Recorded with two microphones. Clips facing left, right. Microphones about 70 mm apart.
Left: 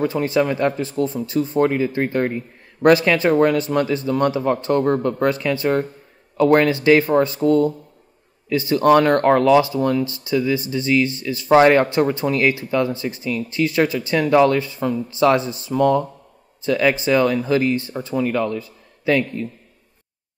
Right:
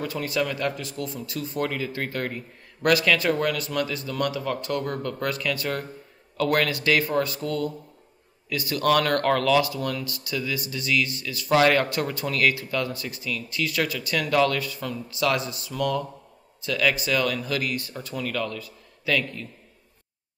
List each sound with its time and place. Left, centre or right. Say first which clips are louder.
0.0 s speech: left 8 dB; left